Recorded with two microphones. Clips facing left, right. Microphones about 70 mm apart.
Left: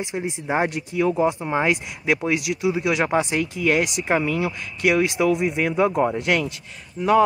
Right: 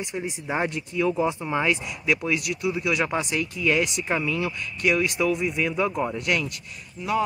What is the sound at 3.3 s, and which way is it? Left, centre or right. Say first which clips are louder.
Speech: left 3 dB; left.